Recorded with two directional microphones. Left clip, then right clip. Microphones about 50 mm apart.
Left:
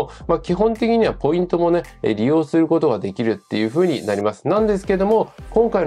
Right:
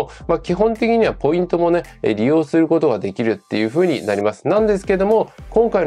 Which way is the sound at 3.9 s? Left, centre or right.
Right.